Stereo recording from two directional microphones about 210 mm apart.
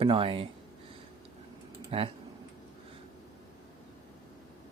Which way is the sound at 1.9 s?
30° right (ahead or behind).